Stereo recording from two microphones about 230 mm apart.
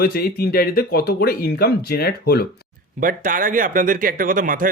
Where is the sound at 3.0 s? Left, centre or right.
Right.